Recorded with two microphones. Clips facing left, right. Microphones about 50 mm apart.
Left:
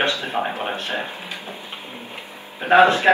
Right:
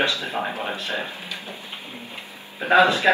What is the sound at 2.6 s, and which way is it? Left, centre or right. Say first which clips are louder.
Speech: left 3 dB; left.